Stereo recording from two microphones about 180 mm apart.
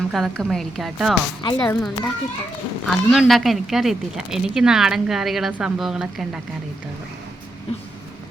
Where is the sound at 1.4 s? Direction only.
20° left (ahead or behind).